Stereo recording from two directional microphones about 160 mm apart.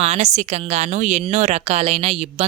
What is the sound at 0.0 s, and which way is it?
Speech, 40° right (ahead or behind).